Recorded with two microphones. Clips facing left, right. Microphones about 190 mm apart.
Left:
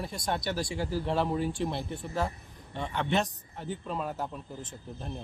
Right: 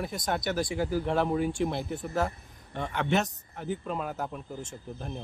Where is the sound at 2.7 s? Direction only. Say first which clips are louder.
Right 1 dB; centre (ahead or behind).